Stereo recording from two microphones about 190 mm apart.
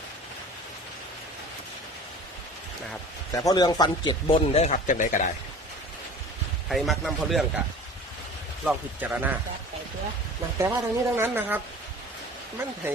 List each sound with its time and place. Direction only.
3.3 s speech: 20° left (ahead or behind); by 5.3 s 40° left (ahead or behind)
6.7 s speech: centre (ahead or behind)
8.6 s a woman's voice: 10° right (ahead or behind)
10.6 s a woman's voice: 15° right (ahead or behind)